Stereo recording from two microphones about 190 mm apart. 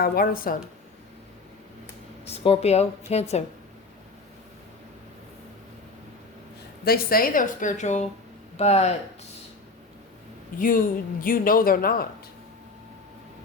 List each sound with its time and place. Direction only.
0.0 s speech: 50° left (ahead or behind)
2.2 s a woman's voice: 30° left (ahead or behind)
6.8 s a woman's voice: 50° left (ahead or behind); by 9.0 s 35° left (ahead or behind)
10.6 s speech: 45° left (ahead or behind)